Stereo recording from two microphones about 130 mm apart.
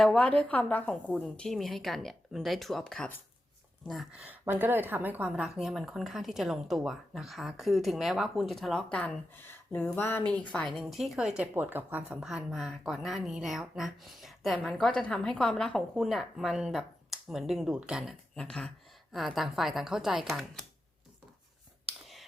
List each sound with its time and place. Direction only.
0.0 s speech: 5° left (ahead or behind)
4.3 s a woman's voice: 15° right (ahead or behind)
5.5 s speech: centre (ahead or behind)